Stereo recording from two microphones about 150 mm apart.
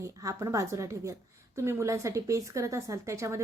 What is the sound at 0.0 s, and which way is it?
A woman's voice, 20° right (ahead or behind).